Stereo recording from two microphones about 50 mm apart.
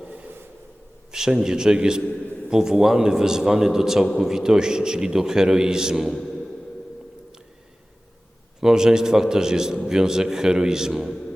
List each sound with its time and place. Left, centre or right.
1.1 s a man's voice: centre
8.6 s a man's voice: centre